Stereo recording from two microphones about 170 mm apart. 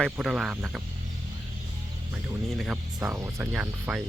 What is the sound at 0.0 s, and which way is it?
Speech, centre (ahead or behind).